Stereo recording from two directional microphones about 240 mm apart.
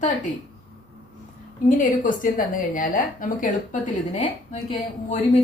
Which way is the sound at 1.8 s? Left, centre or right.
Left.